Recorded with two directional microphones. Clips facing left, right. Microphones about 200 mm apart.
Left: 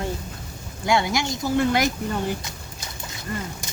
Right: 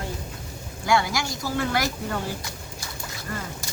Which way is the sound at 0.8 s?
20° left (ahead or behind).